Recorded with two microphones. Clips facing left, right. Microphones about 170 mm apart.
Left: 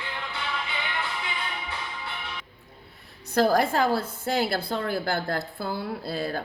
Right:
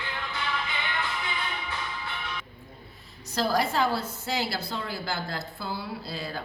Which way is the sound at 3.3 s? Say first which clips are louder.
Left 4 dB; 50° left (ahead or behind).